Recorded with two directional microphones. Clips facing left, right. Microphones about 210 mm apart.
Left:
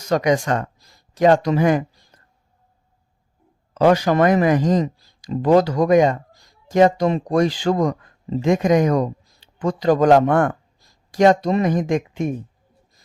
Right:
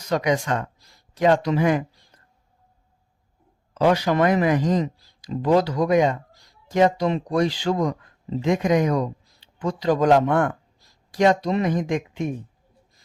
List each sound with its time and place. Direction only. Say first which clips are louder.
0.1 s speech: left 4 dB; 45° left (ahead or behind)
3.8 s speech: left 4 dB; 45° left (ahead or behind)